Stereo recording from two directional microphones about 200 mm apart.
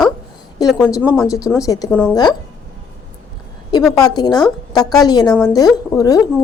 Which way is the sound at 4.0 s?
20° left (ahead or behind).